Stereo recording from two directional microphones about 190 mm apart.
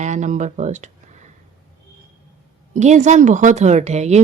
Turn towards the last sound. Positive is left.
turn(degrees=-35)  # may be behind; listen again after turning